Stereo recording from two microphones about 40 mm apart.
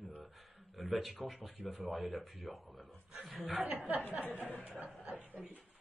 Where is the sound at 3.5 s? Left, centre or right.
Right.